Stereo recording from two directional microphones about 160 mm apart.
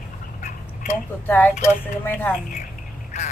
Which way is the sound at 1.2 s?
10° left (ahead or behind).